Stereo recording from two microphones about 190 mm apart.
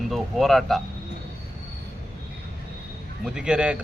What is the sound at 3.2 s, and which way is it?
Speech, 5° right (ahead or behind).